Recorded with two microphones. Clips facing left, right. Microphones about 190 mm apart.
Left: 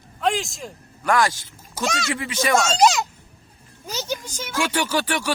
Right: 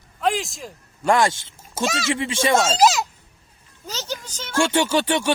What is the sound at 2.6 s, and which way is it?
Speech, centre (ahead or behind).